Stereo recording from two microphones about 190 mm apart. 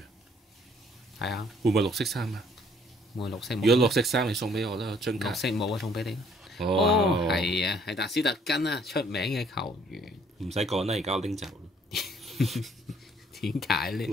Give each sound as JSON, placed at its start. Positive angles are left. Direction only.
{"t": 1.2, "sound": "speech", "side_deg": 0}
{"t": 7.5, "sound": "speech", "side_deg": 60}
{"t": 9.3, "sound": "speech", "side_deg": 0}
{"t": 10.8, "sound": "speech", "side_deg": -35}
{"t": 11.4, "sound": "a sound", "side_deg": 0}
{"t": 13.3, "sound": "speech", "side_deg": 0}